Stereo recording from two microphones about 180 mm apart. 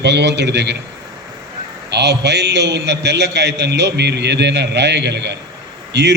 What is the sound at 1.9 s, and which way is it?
A man's voice, 70° right (ahead or behind).